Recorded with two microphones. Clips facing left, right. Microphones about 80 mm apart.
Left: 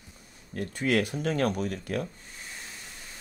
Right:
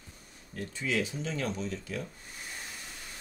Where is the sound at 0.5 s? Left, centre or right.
Left.